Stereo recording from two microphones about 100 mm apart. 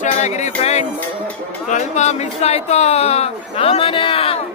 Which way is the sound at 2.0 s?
90° left.